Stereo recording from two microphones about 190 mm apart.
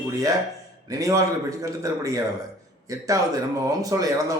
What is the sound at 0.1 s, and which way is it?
A man's voice, 15° right (ahead or behind).